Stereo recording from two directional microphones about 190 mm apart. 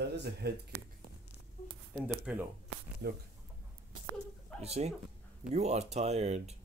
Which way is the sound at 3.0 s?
60° right (ahead or behind).